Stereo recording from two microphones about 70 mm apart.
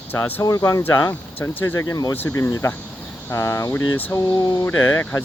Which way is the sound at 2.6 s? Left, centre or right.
Left.